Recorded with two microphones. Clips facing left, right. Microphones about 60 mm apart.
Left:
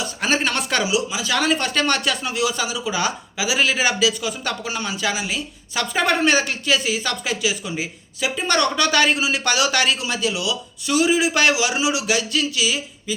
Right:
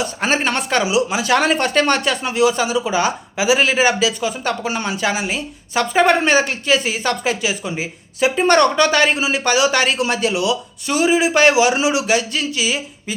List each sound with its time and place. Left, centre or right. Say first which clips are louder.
0.3 s speech: right 3 dB; right
1.1 s speech: right 5 dB; right
8.7 s speech: right 3 dB; right
10.0 s speech: right 5 dB; right